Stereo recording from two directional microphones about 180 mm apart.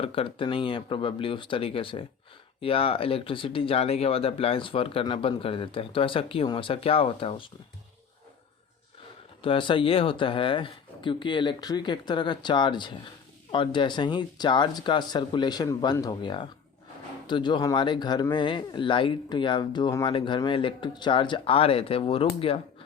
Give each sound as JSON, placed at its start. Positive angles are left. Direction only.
{"t": 0.0, "sound": "speech", "side_deg": 30}
{"t": 9.4, "sound": "speech", "side_deg": 30}